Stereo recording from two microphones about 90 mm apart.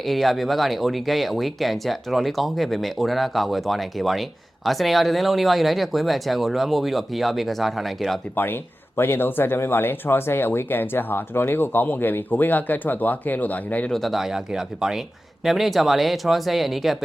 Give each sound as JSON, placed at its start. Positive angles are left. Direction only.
{"t": 0.0, "sound": "speech", "side_deg": 0}
{"t": 9.0, "sound": "speech", "side_deg": 25}
{"t": 13.9, "sound": "speech", "side_deg": 0}